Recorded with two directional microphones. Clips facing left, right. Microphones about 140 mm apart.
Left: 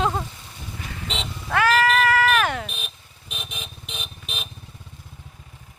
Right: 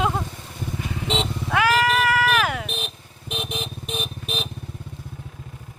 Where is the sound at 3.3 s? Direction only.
60° right (ahead or behind).